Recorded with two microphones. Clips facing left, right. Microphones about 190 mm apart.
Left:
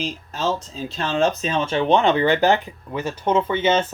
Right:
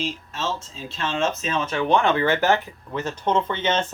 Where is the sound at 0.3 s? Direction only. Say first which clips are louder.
Left 5 dB; 35° left (ahead or behind).